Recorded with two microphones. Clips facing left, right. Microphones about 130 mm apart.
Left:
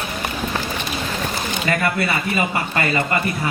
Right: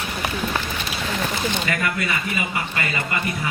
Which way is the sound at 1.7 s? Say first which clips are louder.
Left 4 dB; 35° left (ahead or behind).